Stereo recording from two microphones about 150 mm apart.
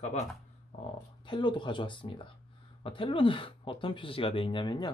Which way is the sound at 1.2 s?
30° left (ahead or behind).